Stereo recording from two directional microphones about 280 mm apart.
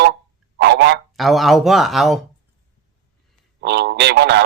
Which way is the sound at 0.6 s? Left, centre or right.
Right.